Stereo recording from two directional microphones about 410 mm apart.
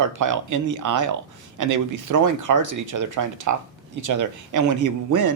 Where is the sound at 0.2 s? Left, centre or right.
Right.